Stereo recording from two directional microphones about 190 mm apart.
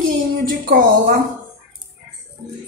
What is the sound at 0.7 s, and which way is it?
Speech, 45° right (ahead or behind).